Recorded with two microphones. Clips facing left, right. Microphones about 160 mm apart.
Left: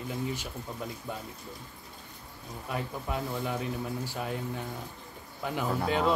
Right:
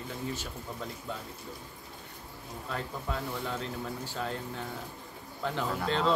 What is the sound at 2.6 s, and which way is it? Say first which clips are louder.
Speech: left 2 dB; 15° left (ahead or behind).